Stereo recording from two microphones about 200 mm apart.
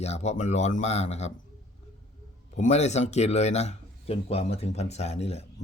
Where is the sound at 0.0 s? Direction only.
35° left (ahead or behind).